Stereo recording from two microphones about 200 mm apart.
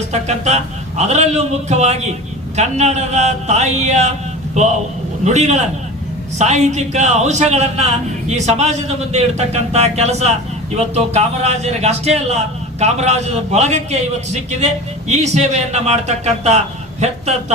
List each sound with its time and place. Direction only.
0.1 s a man's voice: 35° right (ahead or behind)